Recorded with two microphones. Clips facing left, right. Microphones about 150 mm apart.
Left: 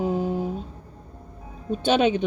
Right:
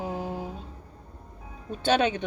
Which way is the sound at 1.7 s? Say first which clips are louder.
Left 4 dB; 20° left (ahead or behind).